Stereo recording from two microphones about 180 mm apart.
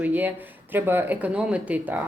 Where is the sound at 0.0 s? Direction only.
10° right (ahead or behind).